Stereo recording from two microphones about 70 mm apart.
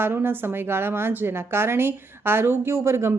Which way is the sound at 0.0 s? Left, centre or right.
Right.